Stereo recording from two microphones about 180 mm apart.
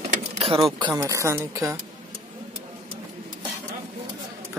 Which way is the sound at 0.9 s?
15° right (ahead or behind).